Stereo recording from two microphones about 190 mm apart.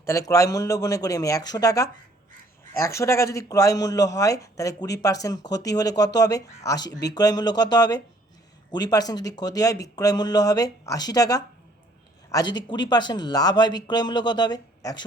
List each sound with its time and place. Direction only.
0.0 s a man's voice: 15° left (ahead or behind)